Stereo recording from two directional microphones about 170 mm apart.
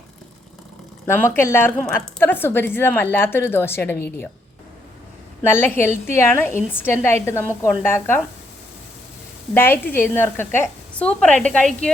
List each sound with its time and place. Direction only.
1.0 s a woman's voice: 15° left (ahead or behind)
5.4 s a woman's voice: 15° left (ahead or behind)
9.6 s a woman's voice: 10° left (ahead or behind)